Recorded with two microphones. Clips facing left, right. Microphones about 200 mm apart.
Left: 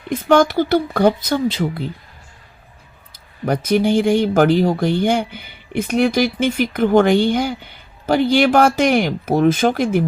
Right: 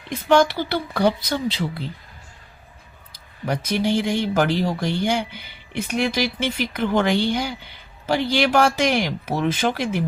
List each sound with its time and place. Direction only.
0.1 s speech: 45° left (ahead or behind)
3.4 s speech: 50° left (ahead or behind)